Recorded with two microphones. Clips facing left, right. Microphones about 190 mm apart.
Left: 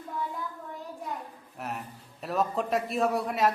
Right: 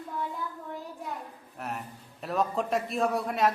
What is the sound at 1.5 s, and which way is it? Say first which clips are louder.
A man's voice: even; centre (ahead or behind).